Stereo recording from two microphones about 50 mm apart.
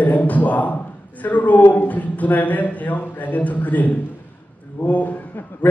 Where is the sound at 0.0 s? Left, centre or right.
Left.